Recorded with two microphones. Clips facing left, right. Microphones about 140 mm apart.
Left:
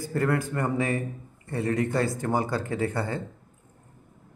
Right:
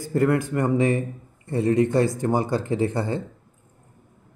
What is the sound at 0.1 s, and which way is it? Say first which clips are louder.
Speech: right 5 dB; 20° right (ahead or behind).